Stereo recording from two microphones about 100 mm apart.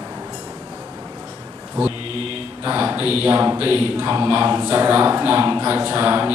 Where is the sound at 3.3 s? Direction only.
20° right (ahead or behind).